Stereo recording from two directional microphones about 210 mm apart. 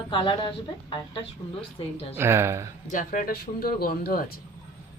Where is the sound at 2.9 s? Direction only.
40° left (ahead or behind).